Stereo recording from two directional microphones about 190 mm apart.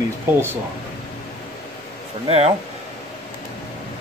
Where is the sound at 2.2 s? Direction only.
30° right (ahead or behind).